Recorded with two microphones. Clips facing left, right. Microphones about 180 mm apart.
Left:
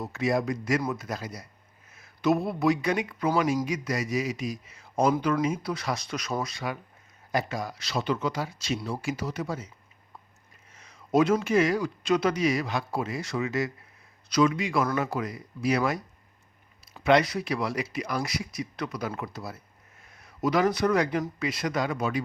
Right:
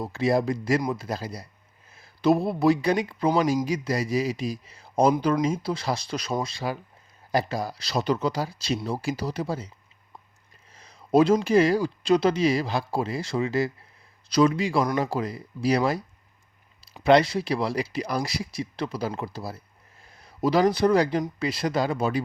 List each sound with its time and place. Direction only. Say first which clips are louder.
0.0 s speech: right 3 dB; 30° right (ahead or behind)
10.7 s speech: right 4 dB; 35° right (ahead or behind)
17.0 s speech: right 3 dB; 30° right (ahead or behind)